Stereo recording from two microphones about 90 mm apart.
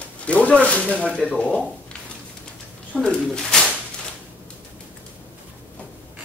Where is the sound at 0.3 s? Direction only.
15° left (ahead or behind).